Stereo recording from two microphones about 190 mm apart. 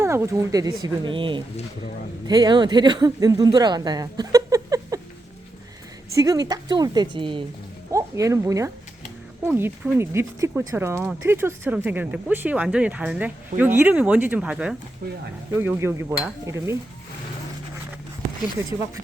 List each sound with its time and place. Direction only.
0.0 s speech: 15° right (ahead or behind)
6.1 s speech: 20° right (ahead or behind)
7.9 s speech: 15° right (ahead or behind)